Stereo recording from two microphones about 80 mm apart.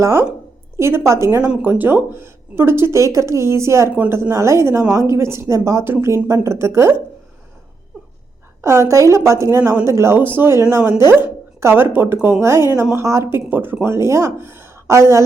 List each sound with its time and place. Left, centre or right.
0.0 s speech: right
1.6 s speech: right
8.6 s speech: right
13.5 s speech: right